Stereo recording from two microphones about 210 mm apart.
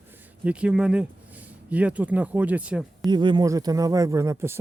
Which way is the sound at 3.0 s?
20° right (ahead or behind).